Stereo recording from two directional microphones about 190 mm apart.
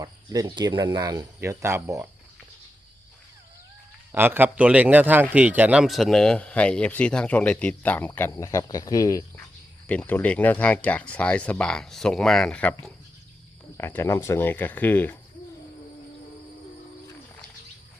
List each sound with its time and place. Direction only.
0.0 s speech: 20° right (ahead or behind)
4.1 s a man's voice: 10° right (ahead or behind); by 15.2 s 10° left (ahead or behind)